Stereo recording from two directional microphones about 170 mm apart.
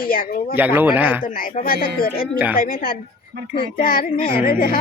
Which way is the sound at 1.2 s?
55° left (ahead or behind).